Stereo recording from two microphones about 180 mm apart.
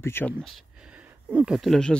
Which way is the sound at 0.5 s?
5° right (ahead or behind).